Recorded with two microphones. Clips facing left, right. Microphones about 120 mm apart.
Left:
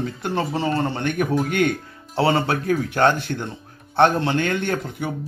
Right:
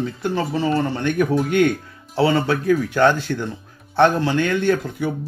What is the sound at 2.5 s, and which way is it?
Speech, 55° left (ahead or behind).